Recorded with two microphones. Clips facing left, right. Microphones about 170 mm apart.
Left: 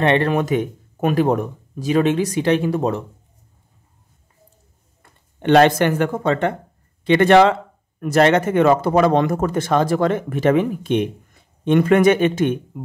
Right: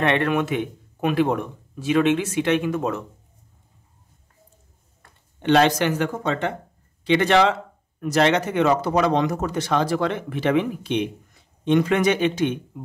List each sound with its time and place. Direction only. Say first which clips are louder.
0.0 s speech: left 3 dB; 30° left (ahead or behind)
5.4 s speech: left 4 dB; 55° left (ahead or behind)